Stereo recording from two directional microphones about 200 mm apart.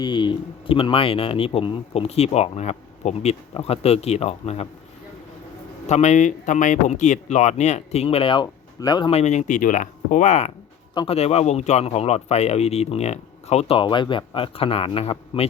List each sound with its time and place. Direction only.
0.0 s speech: 20° left (ahead or behind)
5.9 s speech: 35° left (ahead or behind)